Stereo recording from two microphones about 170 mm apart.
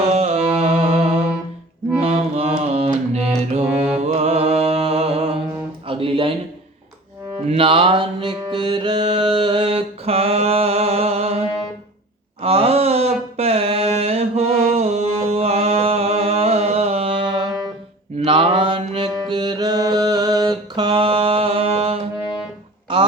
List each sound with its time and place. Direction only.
0.0 s music: 40° right (ahead or behind)
5.9 s a sound: 30° right (ahead or behind)
7.4 s mantra: 35° right (ahead or behind)
12.4 s a sound: 35° right (ahead or behind)
18.2 s mantra: 30° right (ahead or behind)
22.2 s music: 5° right (ahead or behind)